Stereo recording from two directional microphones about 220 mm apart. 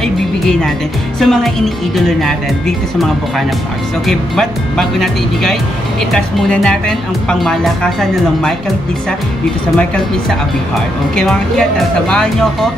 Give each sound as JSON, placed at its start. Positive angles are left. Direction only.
{"t": 0.0, "sound": "music", "side_deg": 0}
{"t": 1.2, "sound": "speech", "side_deg": 0}
{"t": 4.1, "sound": "speech", "side_deg": 0}
{"t": 12.1, "sound": "speech", "side_deg": 5}